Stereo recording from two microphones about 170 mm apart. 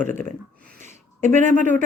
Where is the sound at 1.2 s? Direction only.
45° right (ahead or behind).